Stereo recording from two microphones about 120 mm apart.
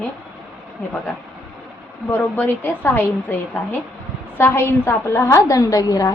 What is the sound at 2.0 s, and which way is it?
A woman's voice, 15° left (ahead or behind).